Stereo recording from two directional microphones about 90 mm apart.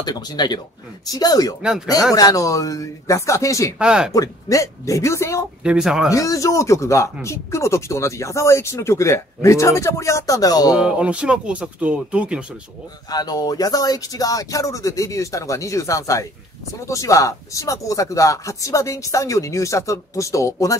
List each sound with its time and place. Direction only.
0.0 s speech: 50° left (ahead or behind)
3.7 s speech: 10° right (ahead or behind)
4.1 s speech: 40° left (ahead or behind)
5.6 s speech: 10° right (ahead or behind)
6.0 s speech: 40° left (ahead or behind)
10.7 s speech: 10° right (ahead or behind)
13.1 s speech: 45° left (ahead or behind)